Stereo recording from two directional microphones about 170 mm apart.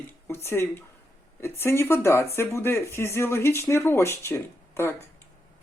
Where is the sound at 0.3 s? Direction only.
15° left (ahead or behind).